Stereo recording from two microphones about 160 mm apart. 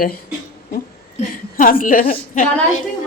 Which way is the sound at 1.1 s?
55° left (ahead or behind).